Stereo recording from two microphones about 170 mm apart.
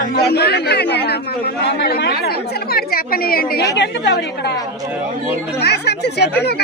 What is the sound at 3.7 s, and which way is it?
Speech, 90° left.